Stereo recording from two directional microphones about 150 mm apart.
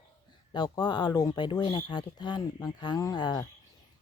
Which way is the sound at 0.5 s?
30° left (ahead or behind).